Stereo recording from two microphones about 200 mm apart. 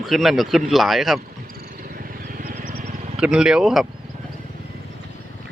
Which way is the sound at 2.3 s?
45° right (ahead or behind).